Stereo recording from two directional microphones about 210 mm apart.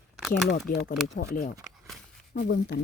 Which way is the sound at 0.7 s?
45° left (ahead or behind).